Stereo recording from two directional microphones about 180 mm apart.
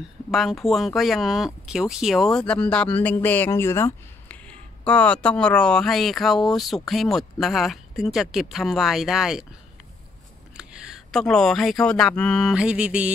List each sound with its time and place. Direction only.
0.3 s speech: centre (ahead or behind)
10.6 s speech: 5° right (ahead or behind)